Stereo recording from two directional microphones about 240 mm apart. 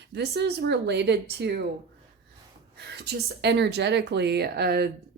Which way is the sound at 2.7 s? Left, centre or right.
Right.